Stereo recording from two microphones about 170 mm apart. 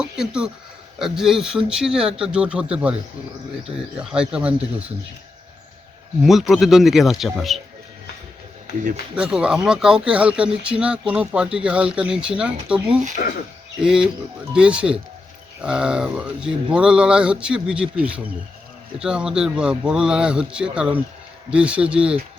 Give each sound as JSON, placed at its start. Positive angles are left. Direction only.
{"t": 0.0, "sound": "speech", "side_deg": -5}
{"t": 3.9, "sound": "speech", "side_deg": -5}
{"t": 6.2, "sound": "speech", "side_deg": 0}
{"t": 9.1, "sound": "speech", "side_deg": -5}
{"t": 13.2, "sound": "speech", "side_deg": 65}
{"t": 13.8, "sound": "speech", "side_deg": -5}
{"t": 18.9, "sound": "speech", "side_deg": -5}